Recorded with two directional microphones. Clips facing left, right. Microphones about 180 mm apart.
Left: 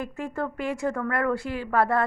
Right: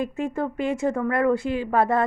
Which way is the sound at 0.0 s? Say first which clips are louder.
Right 4 dB; 20° right (ahead or behind).